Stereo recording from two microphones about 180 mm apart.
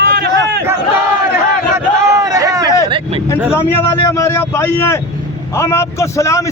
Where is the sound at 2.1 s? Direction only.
20° right (ahead or behind).